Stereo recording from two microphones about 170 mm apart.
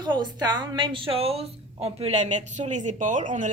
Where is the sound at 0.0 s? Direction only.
25° right (ahead or behind).